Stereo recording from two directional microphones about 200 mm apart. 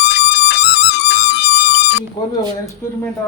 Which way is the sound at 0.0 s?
60° left (ahead or behind).